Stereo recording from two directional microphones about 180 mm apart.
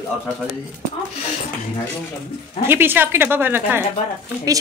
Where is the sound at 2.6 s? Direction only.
10° right (ahead or behind).